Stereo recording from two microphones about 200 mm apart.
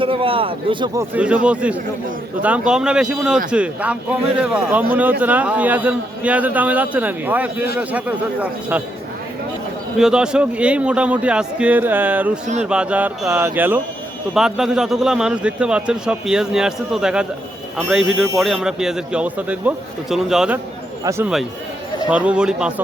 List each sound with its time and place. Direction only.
0.0 s a man's voice: 25° right (ahead or behind)
1.1 s a man's voice: 5° right (ahead or behind)
10.0 s a man's voice: 5° right (ahead or behind)
21.0 s a man's voice: 15° right (ahead or behind)